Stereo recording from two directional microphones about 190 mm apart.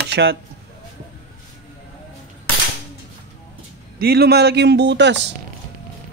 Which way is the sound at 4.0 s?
55° right (ahead or behind).